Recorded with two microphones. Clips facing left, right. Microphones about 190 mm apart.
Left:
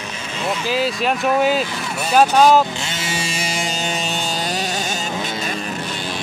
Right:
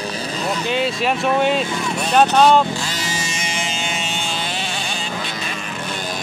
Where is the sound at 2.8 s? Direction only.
25° left (ahead or behind).